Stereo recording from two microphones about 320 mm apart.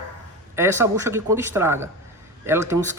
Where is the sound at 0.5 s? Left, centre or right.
Centre.